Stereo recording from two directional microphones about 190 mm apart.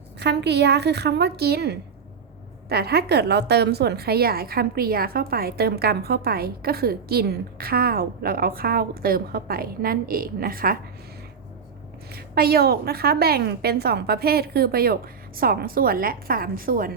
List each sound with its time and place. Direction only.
0.2 s a woman's voice: 60° right (ahead or behind)
12.1 s a woman's voice: 55° right (ahead or behind)